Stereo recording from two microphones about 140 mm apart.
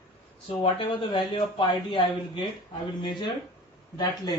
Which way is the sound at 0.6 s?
35° left (ahead or behind).